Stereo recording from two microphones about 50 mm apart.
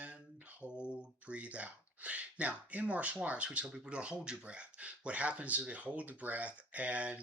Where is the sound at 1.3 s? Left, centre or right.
Right.